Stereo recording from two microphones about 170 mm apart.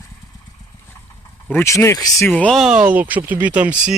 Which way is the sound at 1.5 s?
15° left (ahead or behind).